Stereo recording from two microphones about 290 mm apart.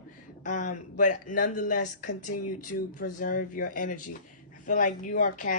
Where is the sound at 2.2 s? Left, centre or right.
Left.